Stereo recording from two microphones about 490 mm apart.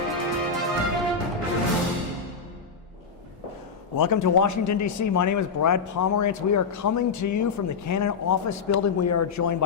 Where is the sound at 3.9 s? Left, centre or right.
Left.